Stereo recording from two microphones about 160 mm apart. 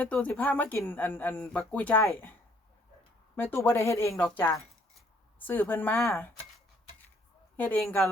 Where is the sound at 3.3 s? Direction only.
15° left (ahead or behind).